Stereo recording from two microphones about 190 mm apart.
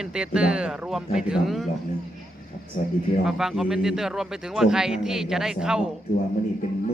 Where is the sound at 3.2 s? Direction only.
Centre (ahead or behind).